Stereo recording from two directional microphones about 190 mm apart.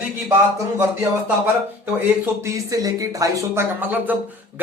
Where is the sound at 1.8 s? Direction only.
15° right (ahead or behind).